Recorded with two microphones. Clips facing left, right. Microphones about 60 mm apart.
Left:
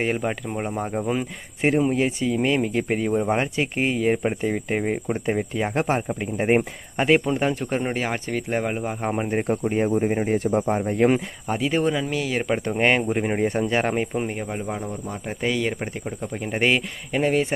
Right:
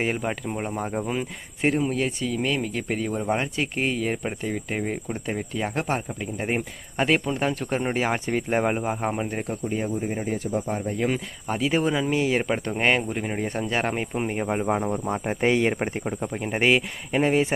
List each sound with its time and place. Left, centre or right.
0.0 s speech: centre
1.6 s speech: centre
6.9 s speech: centre
9.5 s speech: left
10.7 s speech: left
11.4 s speech: centre
12.1 s speech: right
12.4 s speech: centre
13.1 s speech: left
13.4 s speech: centre
14.5 s speech: right
16.4 s speech: centre
17.2 s speech: centre